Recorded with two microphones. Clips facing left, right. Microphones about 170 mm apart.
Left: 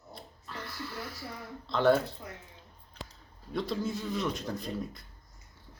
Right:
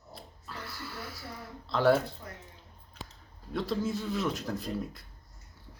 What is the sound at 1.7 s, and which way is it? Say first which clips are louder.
Speech: even; 5° right (ahead or behind).